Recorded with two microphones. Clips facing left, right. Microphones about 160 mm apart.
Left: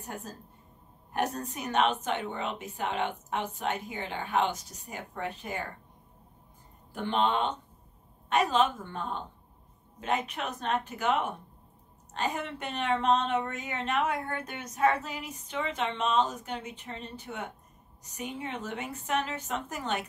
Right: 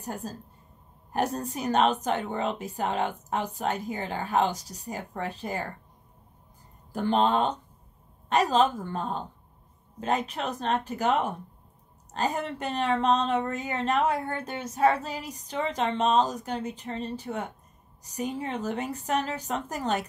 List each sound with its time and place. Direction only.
0.0 s a woman's voice: 35° right (ahead or behind)
6.9 s a woman's voice: 40° right (ahead or behind)